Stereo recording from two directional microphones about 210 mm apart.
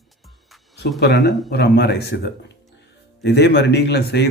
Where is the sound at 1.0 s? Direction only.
50° left (ahead or behind).